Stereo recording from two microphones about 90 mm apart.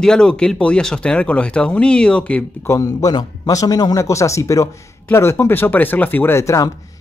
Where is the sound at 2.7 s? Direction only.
40° left (ahead or behind).